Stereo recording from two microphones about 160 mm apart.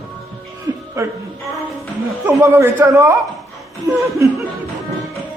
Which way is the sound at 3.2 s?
Centre (ahead or behind).